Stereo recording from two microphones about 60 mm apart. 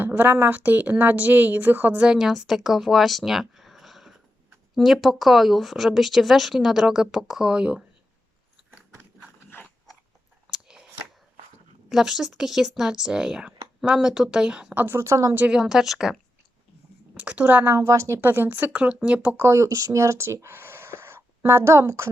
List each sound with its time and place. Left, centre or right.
0.0 s a woman's voice: right
2.1 s speech: centre
10.5 s scissors: centre
11.9 s speech: centre
14.9 s speech: right
15.4 s speech: centre
17.2 s a woman's voice: right
17.7 s speech: right
18.2 s a woman's voice: right
19.4 s speech: right
20.0 s a woman's voice: right